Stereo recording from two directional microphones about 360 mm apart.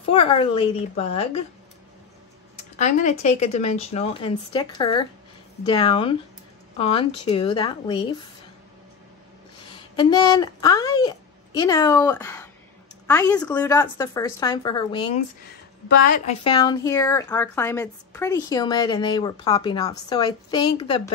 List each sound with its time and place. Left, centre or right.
0.1 s a woman's voice: centre
2.8 s a woman's voice: centre
9.9 s a woman's voice: centre